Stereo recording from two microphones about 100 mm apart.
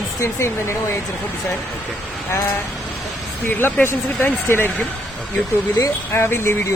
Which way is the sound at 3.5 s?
20° left (ahead or behind).